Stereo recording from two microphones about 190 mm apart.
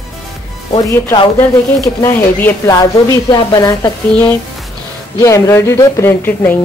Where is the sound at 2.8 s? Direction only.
20° left (ahead or behind).